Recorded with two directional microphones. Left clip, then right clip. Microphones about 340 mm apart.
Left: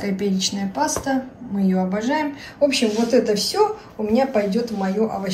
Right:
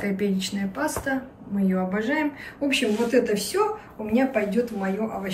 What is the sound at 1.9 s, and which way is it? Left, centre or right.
Speech, centre.